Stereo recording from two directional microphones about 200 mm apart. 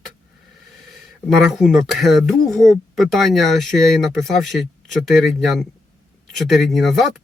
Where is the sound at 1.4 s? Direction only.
Centre (ahead or behind).